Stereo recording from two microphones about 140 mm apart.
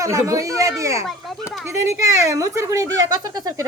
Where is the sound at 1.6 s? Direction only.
20° right (ahead or behind).